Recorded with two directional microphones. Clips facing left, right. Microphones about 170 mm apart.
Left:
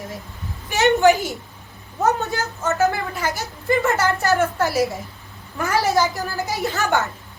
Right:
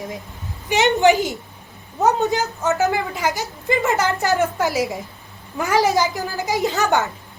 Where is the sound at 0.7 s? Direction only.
20° right (ahead or behind).